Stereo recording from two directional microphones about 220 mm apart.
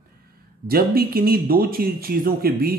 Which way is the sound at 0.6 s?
45° right (ahead or behind).